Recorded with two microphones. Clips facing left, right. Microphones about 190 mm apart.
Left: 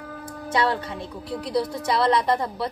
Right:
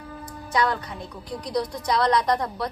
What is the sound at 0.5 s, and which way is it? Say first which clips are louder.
Speech: left 1 dB; 25° left (ahead or behind).